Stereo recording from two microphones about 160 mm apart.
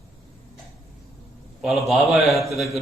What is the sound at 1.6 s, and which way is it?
A man's voice, centre (ahead or behind).